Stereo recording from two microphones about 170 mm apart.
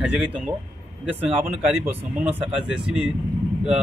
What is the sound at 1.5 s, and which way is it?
Speech, 10° right (ahead or behind).